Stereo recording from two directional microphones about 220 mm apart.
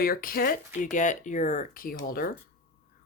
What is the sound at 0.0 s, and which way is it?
Speech, 40° left (ahead or behind).